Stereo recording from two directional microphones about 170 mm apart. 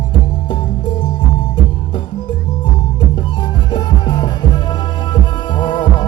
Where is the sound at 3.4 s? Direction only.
25° left (ahead or behind).